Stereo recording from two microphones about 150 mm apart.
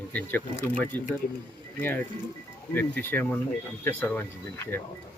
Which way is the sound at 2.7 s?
10° left (ahead or behind).